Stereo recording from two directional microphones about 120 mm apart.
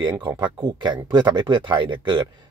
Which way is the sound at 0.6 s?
35° right (ahead or behind).